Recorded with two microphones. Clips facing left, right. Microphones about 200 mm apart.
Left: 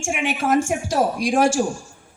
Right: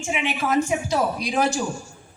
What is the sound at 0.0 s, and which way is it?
A woman's voice, 50° left (ahead or behind).